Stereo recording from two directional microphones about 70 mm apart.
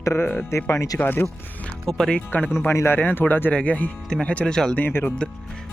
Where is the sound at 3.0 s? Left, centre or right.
Left.